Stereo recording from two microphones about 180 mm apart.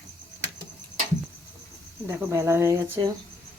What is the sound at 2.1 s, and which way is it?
Speech, 15° right (ahead or behind).